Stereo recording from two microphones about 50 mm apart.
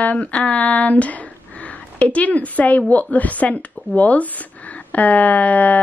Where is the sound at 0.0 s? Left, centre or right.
Left.